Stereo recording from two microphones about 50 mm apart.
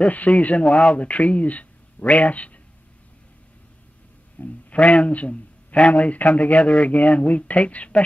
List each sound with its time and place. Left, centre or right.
0.0 s speech: left
4.4 s speech: left